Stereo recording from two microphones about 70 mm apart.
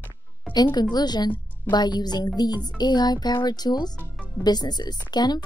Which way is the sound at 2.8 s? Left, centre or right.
Left.